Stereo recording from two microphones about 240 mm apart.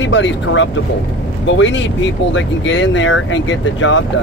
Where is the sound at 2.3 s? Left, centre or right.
Left.